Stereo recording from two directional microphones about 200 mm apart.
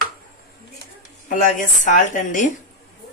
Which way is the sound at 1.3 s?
40° left (ahead or behind).